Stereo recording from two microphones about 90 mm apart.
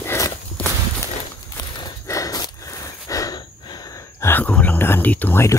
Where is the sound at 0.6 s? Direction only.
15° left (ahead or behind).